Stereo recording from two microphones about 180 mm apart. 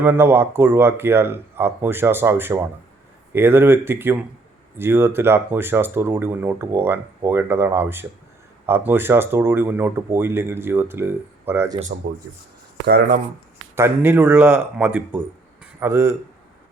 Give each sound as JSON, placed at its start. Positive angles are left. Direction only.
{"t": 0.0, "sound": "speech", "side_deg": -10}
{"t": 12.8, "sound": "speech", "side_deg": -60}
{"t": 13.7, "sound": "speech", "side_deg": -15}